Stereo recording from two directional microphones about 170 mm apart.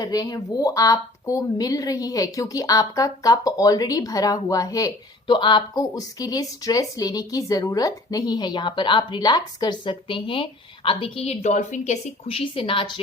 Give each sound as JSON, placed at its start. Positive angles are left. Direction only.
{"t": 0.0, "sound": "a woman's voice", "side_deg": 20}
{"t": 12.5, "sound": "a woman's voice", "side_deg": 30}